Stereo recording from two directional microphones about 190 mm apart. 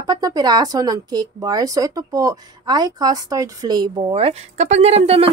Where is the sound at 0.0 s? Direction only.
20° right (ahead or behind).